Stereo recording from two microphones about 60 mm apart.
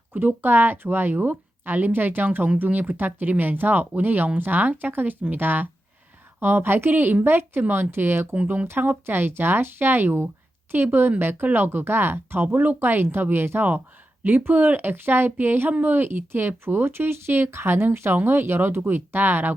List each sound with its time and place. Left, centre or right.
0.1 s speech: right